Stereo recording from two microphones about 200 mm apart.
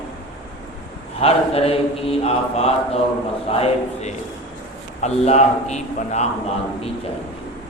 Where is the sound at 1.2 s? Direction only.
30° left (ahead or behind).